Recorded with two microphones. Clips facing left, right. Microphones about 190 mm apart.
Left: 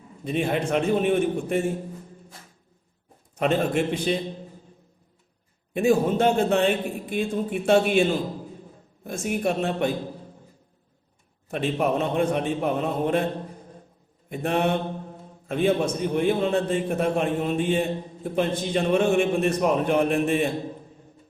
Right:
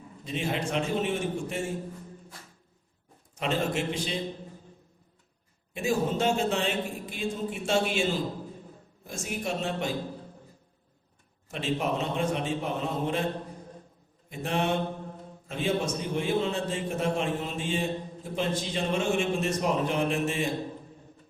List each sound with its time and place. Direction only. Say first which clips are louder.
0.3 s a man's voice: left 6 dB; 55° left (ahead or behind)
3.3 s a man's voice: left 6 dB; 55° left (ahead or behind)
5.7 s a man's voice: left 7 dB; 60° left (ahead or behind)
9.0 s a man's voice: left 8 dB; 55° left (ahead or behind)
11.4 s a man's voice: left 5 dB; 55° left (ahead or behind)
14.3 s a man's voice: left 5 dB; 60° left (ahead or behind)